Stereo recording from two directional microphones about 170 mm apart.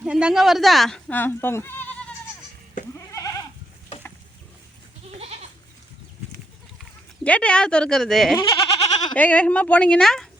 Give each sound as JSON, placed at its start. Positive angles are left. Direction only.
{"t": 0.0, "sound": "speech", "side_deg": -5}
{"t": 3.1, "sound": "goat", "side_deg": 20}
{"t": 5.1, "sound": "goat", "side_deg": -35}
{"t": 7.3, "sound": "speech", "side_deg": 5}
{"t": 8.4, "sound": "goat", "side_deg": 25}
{"t": 9.1, "sound": "speech", "side_deg": 10}